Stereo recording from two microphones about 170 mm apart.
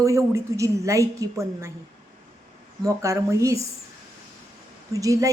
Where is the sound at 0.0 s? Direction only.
15° right (ahead or behind).